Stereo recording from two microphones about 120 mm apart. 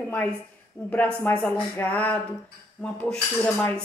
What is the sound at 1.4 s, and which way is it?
Speech, 10° left (ahead or behind).